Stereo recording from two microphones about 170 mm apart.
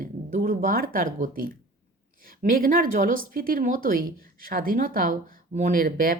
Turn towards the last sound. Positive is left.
turn(degrees=-55)  # may be behind; listen again after turning